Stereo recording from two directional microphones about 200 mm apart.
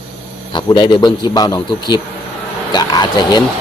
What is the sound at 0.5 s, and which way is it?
Speech, 25° left (ahead or behind).